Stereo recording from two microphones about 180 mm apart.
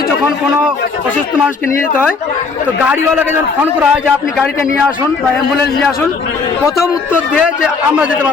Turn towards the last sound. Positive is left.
turn(degrees=-5)  # may be behind; listen again after turning